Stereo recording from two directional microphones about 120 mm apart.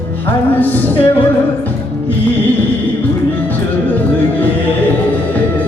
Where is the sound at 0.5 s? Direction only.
15° left (ahead or behind).